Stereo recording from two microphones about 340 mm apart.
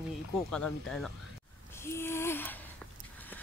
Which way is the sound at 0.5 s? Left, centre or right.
Centre.